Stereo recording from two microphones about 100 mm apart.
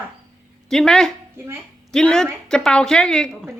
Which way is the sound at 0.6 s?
5° left (ahead or behind).